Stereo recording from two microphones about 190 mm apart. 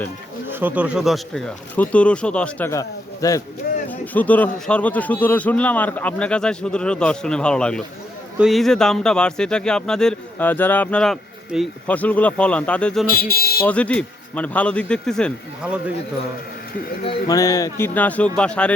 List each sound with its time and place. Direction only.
0.4 s speech: 10° right (ahead or behind)
13.1 s speech: 50° left (ahead or behind)
13.6 s speech: 5° left (ahead or behind)
17.0 s speech: 30° left (ahead or behind)
17.3 s speech: 20° left (ahead or behind)